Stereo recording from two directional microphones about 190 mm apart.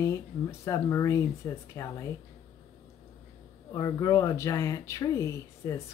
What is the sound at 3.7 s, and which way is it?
Speech, 20° left (ahead or behind).